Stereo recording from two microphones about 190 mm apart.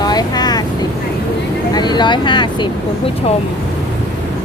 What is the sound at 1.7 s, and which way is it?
Speech, 20° left (ahead or behind).